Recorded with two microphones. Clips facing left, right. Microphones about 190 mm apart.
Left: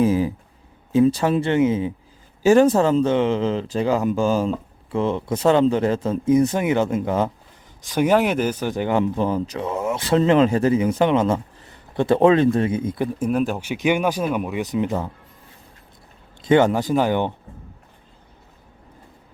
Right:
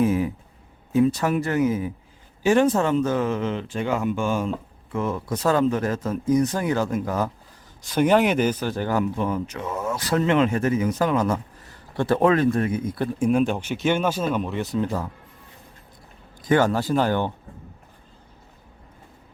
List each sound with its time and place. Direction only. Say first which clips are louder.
0.0 s a sound: left 3 dB; 30° left (ahead or behind)
0.9 s speech: left 3 dB; 30° left (ahead or behind)
2.4 s speech: left 4 dB; 40° left (ahead or behind); by 7.3 s 25° left (ahead or behind)
7.9 s speech: left 1 dB; 5° left (ahead or behind)
8.6 s speech: left 3 dB; 15° left (ahead or behind)
13.1 s speech: right 4 dB; 5° left (ahead or behind); by 15.1 s 20° left (ahead or behind)
16.4 s speech: left 4 dB; 20° left (ahead or behind)